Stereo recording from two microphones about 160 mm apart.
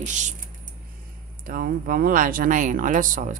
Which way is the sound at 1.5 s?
60° right (ahead or behind).